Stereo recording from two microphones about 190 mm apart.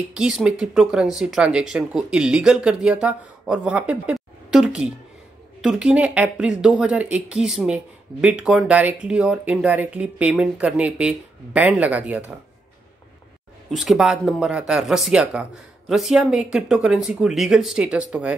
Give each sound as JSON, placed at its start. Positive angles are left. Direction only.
{"t": 0.1, "sound": "speech", "side_deg": -5}
{"t": 13.7, "sound": "speech", "side_deg": 0}